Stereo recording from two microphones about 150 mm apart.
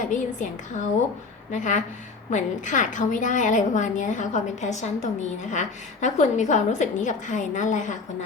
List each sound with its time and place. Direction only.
0.0 s a woman's voice: 55° left (ahead or behind)